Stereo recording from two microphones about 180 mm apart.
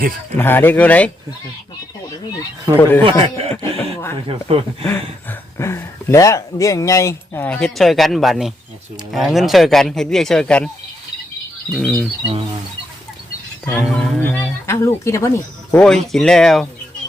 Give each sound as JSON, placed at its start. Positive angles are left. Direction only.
{"t": 0.3, "sound": "speech", "side_deg": 10}
{"t": 2.7, "sound": "speech", "side_deg": -20}
{"t": 3.5, "sound": "speech", "side_deg": 10}
{"t": 4.3, "sound": "speech", "side_deg": -30}
{"t": 5.3, "sound": "speech", "side_deg": 15}
{"t": 11.7, "sound": "speech", "side_deg": 5}
{"t": 13.8, "sound": "speech", "side_deg": 5}
{"t": 15.7, "sound": "speech", "side_deg": 5}